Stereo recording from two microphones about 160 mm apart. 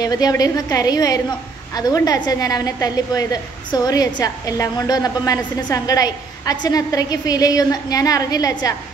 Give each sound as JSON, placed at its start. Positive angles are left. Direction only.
{"t": 0.0, "sound": "a woman's voice", "side_deg": 25}